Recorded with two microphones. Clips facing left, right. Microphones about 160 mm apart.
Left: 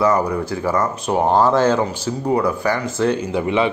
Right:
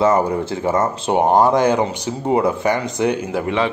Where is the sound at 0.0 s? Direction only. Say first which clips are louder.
Right 1 dB; 25° right (ahead or behind).